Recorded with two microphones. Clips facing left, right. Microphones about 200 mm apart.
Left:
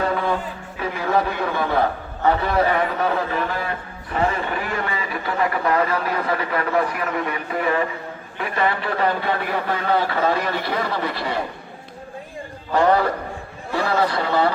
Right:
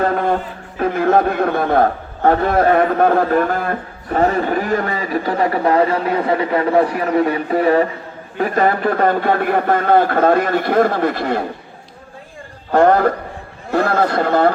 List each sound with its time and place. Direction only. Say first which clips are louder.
0.0 s a man's voice: right 5 dB; 50° right (ahead or behind)
12.7 s speech: right 5 dB; 50° right (ahead or behind)